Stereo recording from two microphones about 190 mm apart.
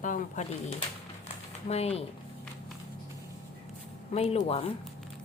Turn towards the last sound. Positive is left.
turn(degrees=30)  # may be behind; listen again after turning